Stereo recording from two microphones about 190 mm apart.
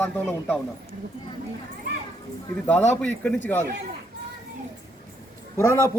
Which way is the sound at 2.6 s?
5° left (ahead or behind).